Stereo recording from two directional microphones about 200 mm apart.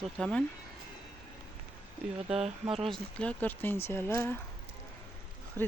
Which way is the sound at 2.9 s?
5° left (ahead or behind).